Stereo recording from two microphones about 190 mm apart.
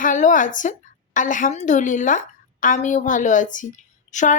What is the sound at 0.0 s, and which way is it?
Speech, 40° left (ahead or behind).